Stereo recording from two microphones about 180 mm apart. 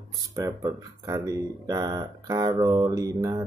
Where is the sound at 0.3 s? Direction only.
15° right (ahead or behind).